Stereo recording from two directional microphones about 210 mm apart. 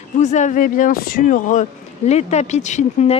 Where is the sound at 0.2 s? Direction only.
35° left (ahead or behind).